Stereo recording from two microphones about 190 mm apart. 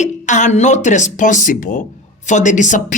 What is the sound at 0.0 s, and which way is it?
Speech, 40° left (ahead or behind).